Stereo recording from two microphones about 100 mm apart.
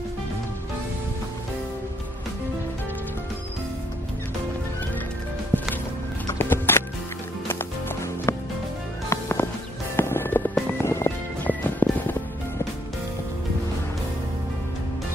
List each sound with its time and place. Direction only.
5.5 s music: 20° left (ahead or behind)